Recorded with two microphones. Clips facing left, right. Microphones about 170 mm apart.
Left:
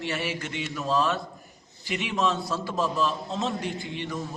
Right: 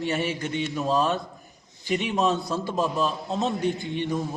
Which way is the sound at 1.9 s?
40° right (ahead or behind).